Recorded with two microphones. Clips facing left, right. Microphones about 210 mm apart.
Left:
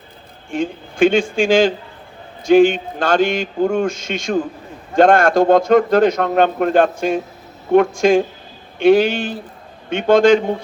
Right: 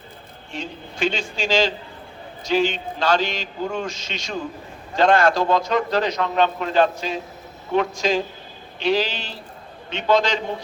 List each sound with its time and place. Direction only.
0.5 s speech: 50° left (ahead or behind)